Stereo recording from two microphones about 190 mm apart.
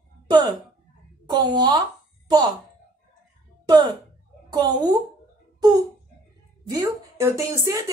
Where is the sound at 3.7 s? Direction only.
25° right (ahead or behind).